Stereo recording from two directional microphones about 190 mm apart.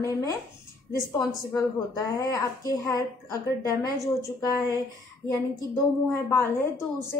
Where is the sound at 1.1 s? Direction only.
15° left (ahead or behind).